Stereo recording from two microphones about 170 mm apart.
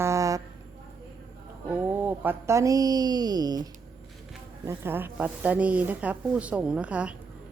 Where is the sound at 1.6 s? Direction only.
10° right (ahead or behind).